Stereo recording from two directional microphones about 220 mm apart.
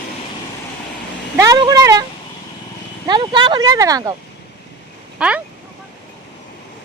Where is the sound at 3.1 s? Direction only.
20° right (ahead or behind).